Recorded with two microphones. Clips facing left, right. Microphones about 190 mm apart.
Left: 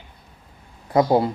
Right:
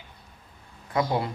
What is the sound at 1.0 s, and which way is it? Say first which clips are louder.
Speech: left 9 dB; 35° left (ahead or behind).